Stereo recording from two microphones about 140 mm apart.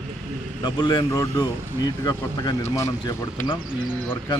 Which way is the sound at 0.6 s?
30° left (ahead or behind).